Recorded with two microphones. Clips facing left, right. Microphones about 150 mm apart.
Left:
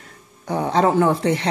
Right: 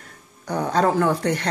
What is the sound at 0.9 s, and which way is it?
Speech, 20° left (ahead or behind).